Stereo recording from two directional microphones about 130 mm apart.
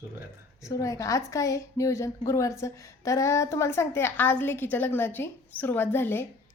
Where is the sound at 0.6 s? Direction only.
25° left (ahead or behind).